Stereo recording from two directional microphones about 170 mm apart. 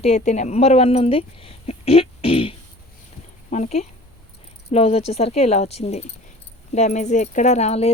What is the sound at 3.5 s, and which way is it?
Speech, 45° left (ahead or behind).